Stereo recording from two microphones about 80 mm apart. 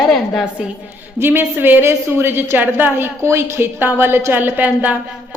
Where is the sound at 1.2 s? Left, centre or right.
Right.